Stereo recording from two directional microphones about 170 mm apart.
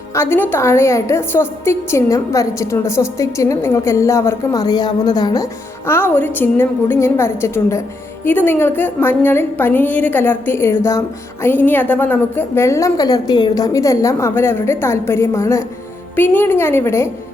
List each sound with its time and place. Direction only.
0.1 s a woman's voice: 15° left (ahead or behind)